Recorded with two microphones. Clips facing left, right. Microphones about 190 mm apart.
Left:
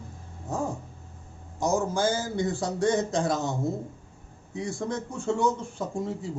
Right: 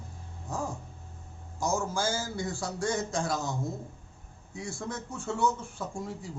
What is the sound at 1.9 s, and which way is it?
A man's voice, 20° left (ahead or behind).